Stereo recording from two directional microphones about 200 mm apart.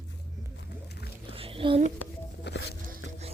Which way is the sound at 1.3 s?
30° right (ahead or behind).